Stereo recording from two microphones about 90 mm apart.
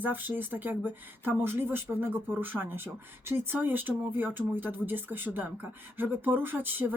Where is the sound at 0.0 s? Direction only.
20° right (ahead or behind).